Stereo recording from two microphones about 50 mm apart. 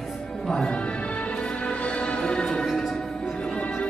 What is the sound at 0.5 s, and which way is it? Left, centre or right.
Music, centre.